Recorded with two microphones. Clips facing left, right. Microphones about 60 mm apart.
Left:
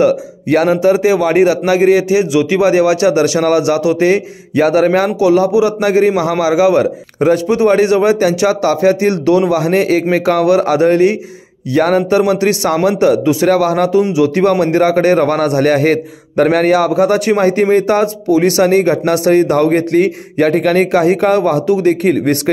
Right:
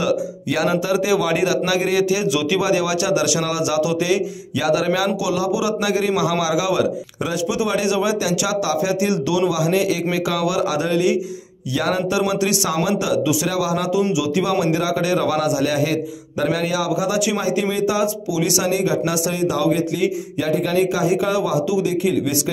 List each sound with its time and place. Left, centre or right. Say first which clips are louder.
0.0 s a man's voice: left 8 dB; left